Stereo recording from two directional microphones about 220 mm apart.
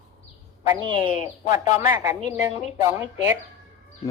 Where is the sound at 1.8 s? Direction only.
10° right (ahead or behind).